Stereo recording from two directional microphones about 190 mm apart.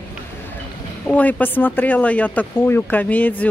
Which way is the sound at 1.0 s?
5° left (ahead or behind).